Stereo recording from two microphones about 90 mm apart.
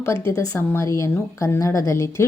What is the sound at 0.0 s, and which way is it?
Speech, 30° left (ahead or behind).